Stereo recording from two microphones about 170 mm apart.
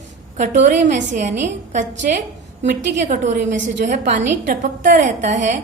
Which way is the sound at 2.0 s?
60° right (ahead or behind).